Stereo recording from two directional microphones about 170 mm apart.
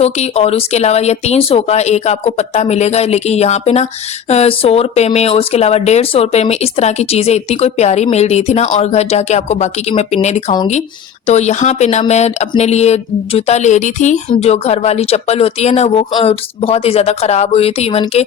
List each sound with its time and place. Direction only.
0.0 s speech: 40° left (ahead or behind)